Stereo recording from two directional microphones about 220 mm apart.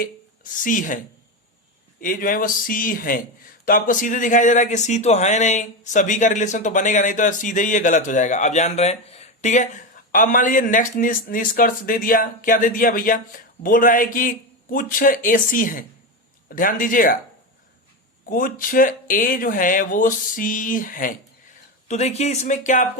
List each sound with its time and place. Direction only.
0.0 s speech: 35° left (ahead or behind)
2.0 s speech: 40° left (ahead or behind)
18.3 s speech: 40° left (ahead or behind)